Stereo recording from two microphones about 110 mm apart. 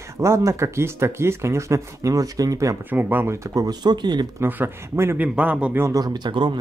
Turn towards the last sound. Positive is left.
turn(degrees=-45)  # may be behind; listen again after turning